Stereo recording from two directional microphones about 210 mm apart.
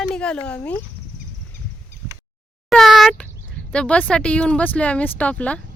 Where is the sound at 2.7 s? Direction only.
Centre (ahead or behind).